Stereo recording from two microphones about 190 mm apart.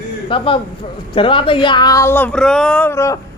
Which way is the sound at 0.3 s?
25° left (ahead or behind).